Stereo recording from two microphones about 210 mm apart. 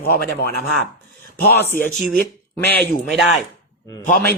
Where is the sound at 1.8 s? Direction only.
40° left (ahead or behind).